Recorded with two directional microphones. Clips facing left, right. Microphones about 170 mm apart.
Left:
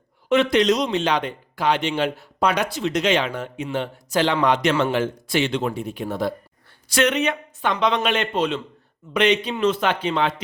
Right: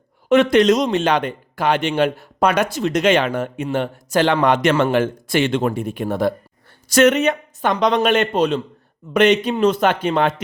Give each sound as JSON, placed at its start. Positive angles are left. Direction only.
{"t": 0.3, "sound": "a man's voice", "side_deg": -50}